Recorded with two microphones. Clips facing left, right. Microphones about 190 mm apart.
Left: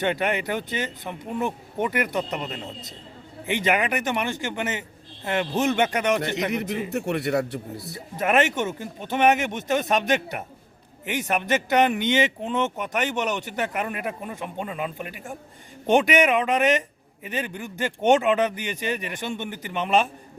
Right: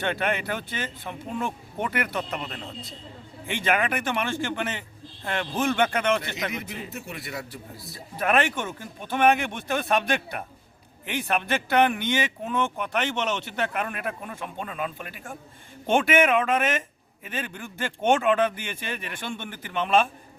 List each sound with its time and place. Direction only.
0.0 s speech: 15° left (ahead or behind)
6.6 s a man's voice: 65° left (ahead or behind)
8.1 s speech: 20° left (ahead or behind)